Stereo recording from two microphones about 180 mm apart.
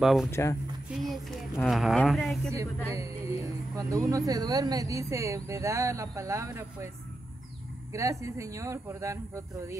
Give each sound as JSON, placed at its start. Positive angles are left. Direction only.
{"t": 0.0, "sound": "speech", "side_deg": 0}
{"t": 0.3, "sound": "speech", "side_deg": 15}
{"t": 0.8, "sound": "speech", "side_deg": 0}
{"t": 2.9, "sound": "a sound", "side_deg": -15}
{"t": 4.3, "sound": "speech", "side_deg": -20}
{"t": 7.9, "sound": "speech", "side_deg": -15}